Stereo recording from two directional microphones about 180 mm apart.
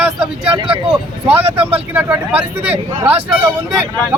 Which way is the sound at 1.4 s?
30° right (ahead or behind).